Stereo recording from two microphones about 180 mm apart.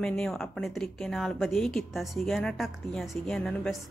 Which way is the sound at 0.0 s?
5° left (ahead or behind).